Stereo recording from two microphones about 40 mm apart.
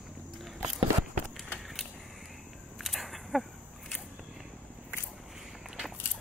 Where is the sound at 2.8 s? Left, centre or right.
Centre.